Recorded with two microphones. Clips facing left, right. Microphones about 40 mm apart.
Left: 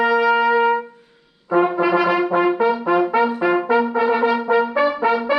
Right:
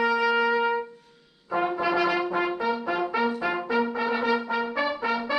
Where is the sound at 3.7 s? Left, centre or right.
Centre.